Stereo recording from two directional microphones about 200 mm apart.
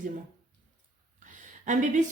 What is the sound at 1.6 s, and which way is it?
Speech, 40° right (ahead or behind).